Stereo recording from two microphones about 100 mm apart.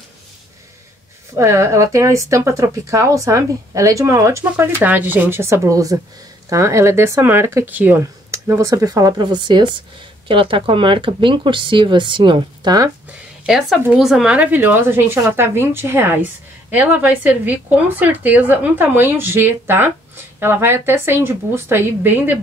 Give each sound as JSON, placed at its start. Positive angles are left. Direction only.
{"t": 1.3, "sound": "a woman's voice", "side_deg": -25}
{"t": 8.0, "sound": "speech", "side_deg": -30}
{"t": 13.5, "sound": "a woman's voice", "side_deg": 0}